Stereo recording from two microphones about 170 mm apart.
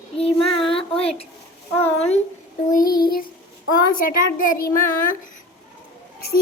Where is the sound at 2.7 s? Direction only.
55° left (ahead or behind).